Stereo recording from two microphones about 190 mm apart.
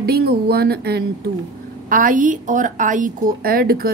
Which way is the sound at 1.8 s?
45° right (ahead or behind).